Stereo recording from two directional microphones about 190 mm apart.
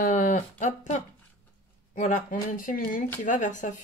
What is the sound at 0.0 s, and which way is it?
Speech, 45° left (ahead or behind).